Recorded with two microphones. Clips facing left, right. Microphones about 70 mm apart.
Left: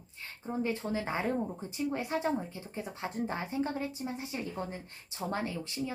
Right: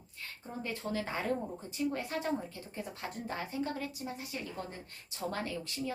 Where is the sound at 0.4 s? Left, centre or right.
Left.